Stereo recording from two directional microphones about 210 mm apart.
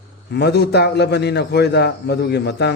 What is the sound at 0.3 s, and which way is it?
A man's voice, 50° left (ahead or behind).